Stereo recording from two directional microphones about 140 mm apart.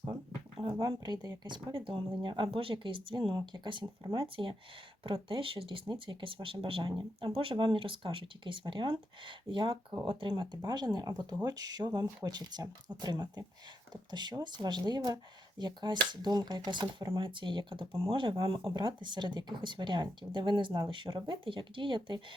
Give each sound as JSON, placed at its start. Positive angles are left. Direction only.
{"t": 0.6, "sound": "speech", "side_deg": -30}